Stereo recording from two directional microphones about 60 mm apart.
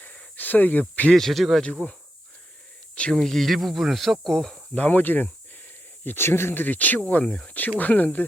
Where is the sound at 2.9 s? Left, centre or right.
Left.